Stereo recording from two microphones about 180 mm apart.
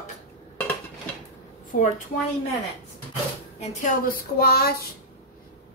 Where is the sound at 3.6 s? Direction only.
50° left (ahead or behind).